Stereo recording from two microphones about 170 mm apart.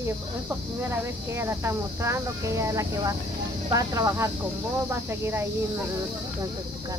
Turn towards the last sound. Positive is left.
turn(degrees=-15)  # may be behind; listen again after turning